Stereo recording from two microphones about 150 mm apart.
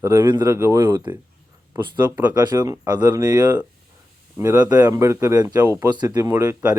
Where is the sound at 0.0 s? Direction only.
20° right (ahead or behind).